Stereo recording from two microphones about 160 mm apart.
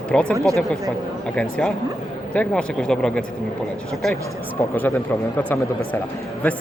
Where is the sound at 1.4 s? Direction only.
5° left (ahead or behind).